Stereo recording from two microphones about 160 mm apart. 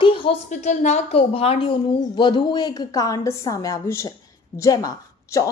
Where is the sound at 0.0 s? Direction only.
35° left (ahead or behind).